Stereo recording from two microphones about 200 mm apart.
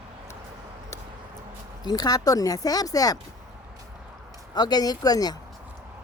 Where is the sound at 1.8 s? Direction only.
20° left (ahead or behind).